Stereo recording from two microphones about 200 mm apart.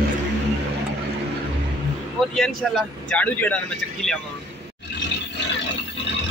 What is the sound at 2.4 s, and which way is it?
Speech, 5° left (ahead or behind).